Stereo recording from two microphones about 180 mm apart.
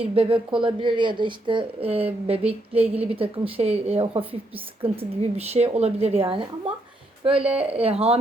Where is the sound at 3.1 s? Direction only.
30° right (ahead or behind).